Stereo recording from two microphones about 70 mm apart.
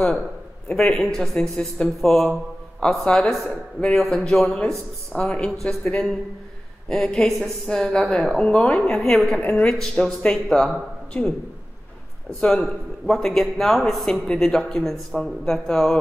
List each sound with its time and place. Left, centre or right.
0.7 s a man's voice: centre
12.4 s a man's voice: centre